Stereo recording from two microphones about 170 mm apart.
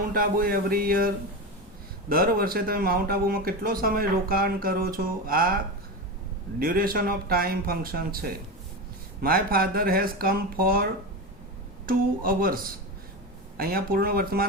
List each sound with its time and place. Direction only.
0.1 s speech: 55° right (ahead or behind)
6.6 s speech: 60° right (ahead or behind)
11.9 s speech: 60° right (ahead or behind)
13.6 s speech: 60° right (ahead or behind)